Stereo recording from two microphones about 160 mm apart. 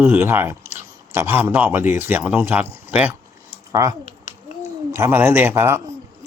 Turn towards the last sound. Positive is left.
turn(degrees=-15)  # may be behind; listen again after turning